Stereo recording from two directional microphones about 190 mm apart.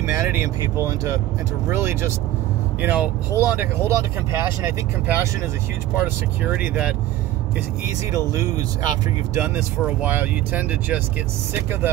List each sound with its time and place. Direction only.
0.0 s speech: 10° right (ahead or behind)
8.3 s speech: 20° right (ahead or behind)